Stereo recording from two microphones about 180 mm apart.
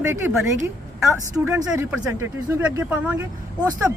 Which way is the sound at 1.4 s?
15° right (ahead or behind).